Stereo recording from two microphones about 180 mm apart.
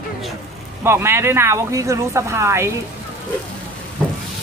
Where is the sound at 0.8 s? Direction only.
15° right (ahead or behind).